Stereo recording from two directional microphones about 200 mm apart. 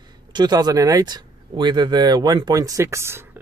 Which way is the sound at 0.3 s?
20° right (ahead or behind).